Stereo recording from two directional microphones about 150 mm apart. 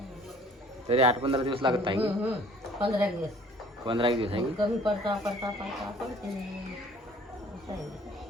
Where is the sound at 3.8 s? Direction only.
35° right (ahead or behind).